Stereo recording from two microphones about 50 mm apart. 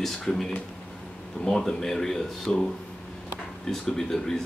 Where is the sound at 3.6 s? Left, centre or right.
Centre.